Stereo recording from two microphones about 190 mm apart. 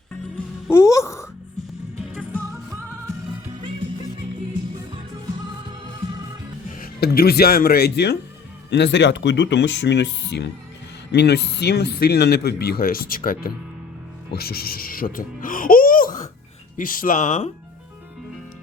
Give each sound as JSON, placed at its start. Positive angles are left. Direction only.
{"t": 0.7, "sound": "music", "side_deg": 15}
{"t": 2.1, "sound": "music", "side_deg": 0}
{"t": 6.7, "sound": "speech", "side_deg": 50}